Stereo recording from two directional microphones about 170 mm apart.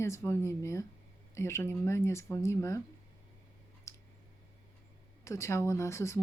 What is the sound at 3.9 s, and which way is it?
Clicking, 15° left (ahead or behind).